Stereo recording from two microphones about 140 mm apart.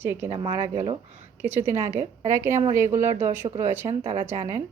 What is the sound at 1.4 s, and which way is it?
A woman's voice, 15° right (ahead or behind).